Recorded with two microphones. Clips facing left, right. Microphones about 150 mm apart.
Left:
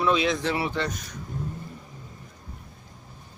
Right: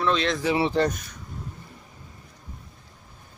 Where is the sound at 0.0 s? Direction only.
10° left (ahead or behind).